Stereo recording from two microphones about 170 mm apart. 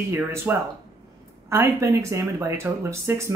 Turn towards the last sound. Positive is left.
turn(degrees=-15)  # may be behind; listen again after turning